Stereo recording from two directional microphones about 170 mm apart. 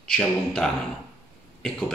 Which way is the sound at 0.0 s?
5° left (ahead or behind).